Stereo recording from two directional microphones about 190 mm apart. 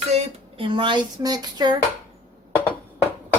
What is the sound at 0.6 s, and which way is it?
Speech, 25° right (ahead or behind).